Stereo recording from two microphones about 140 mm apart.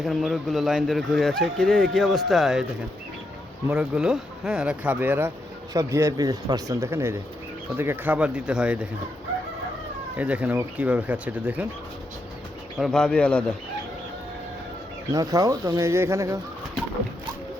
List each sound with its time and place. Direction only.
0.0 s speech: centre (ahead or behind)
3.7 s speech: 5° right (ahead or behind)
10.2 s speech: 10° right (ahead or behind)
12.7 s speech: centre (ahead or behind)
15.1 s speech: 25° right (ahead or behind)